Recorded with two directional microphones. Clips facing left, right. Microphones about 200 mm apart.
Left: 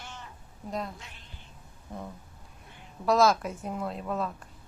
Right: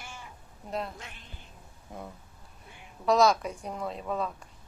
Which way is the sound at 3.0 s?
Centre (ahead or behind).